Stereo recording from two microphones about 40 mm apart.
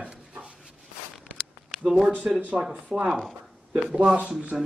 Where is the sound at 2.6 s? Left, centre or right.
Right.